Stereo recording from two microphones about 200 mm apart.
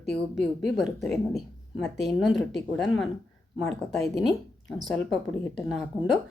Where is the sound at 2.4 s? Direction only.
60° left (ahead or behind).